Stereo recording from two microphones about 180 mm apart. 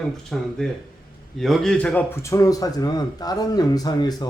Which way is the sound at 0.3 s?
Centre (ahead or behind).